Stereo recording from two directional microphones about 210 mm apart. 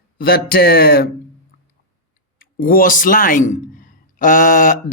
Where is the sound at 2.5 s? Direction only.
45° left (ahead or behind).